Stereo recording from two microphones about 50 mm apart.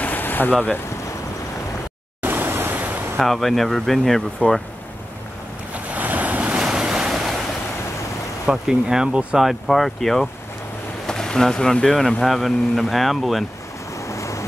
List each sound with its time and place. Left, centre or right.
0.0 s boat: left
2.2 s a sound: right
3.2 s speech: centre
4.4 s speech: left
5.7 s waves: right
6.5 s waves: centre
8.5 s speech: centre
9.4 s speech: centre
13.9 s waves: left